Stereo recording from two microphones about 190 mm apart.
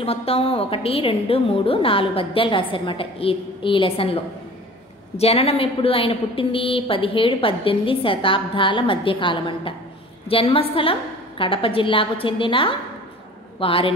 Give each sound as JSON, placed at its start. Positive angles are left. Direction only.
{"t": 0.0, "sound": "a woman's voice", "side_deg": 30}